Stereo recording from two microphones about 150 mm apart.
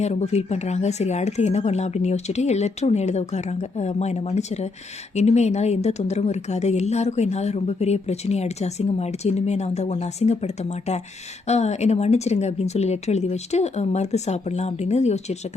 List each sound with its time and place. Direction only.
0.0 s speech: 50° left (ahead or behind)